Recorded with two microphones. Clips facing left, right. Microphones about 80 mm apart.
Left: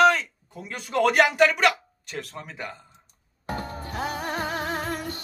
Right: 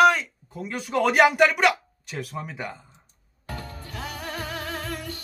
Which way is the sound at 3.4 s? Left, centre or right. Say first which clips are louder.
Left 5 dB; left.